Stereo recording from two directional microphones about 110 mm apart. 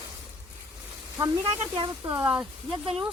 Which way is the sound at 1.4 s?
55° right (ahead or behind).